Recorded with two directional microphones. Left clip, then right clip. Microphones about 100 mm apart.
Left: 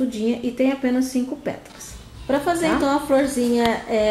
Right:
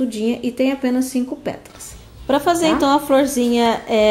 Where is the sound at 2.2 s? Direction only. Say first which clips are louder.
Right 4 dB; 20° right (ahead or behind).